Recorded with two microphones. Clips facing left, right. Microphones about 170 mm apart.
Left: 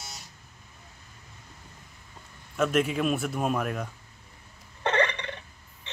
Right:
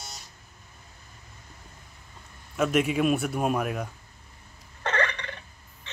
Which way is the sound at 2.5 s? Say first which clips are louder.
Right 1 dB; 5° right (ahead or behind).